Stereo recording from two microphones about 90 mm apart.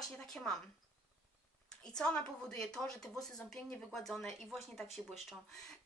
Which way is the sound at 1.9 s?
10° left (ahead or behind).